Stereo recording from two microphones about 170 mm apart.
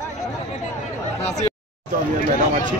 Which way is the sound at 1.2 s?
40° left (ahead or behind).